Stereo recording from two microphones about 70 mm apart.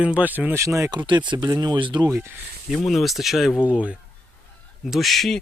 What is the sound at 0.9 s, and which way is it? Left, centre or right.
Speech, right.